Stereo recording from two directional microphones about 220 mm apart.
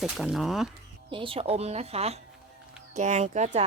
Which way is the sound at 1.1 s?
25° right (ahead or behind).